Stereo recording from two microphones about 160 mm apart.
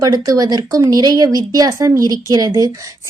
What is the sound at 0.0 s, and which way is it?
A woman's voice, 20° right (ahead or behind).